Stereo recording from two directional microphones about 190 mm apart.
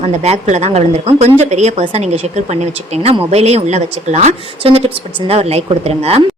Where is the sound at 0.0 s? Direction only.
35° right (ahead or behind).